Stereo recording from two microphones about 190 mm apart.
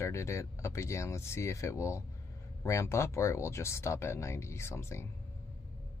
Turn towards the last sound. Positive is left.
turn(degrees=15)  # may be behind; listen again after turning